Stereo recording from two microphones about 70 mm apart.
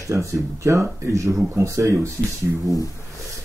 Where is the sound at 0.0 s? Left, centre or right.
Right.